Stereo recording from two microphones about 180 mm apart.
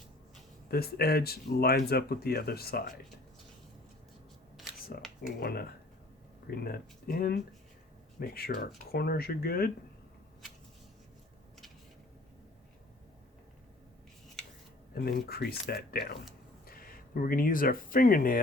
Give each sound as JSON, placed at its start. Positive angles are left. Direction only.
{"t": 0.7, "sound": "speech", "side_deg": 60}
{"t": 4.9, "sound": "speech", "side_deg": 50}
{"t": 14.9, "sound": "speech", "side_deg": 55}